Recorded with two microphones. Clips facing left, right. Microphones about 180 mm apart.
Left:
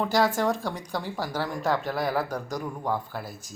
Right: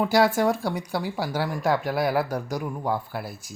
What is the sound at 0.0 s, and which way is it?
Speech, 10° right (ahead or behind).